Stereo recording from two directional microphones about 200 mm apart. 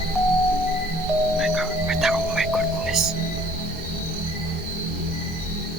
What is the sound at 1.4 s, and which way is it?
Music, centre (ahead or behind).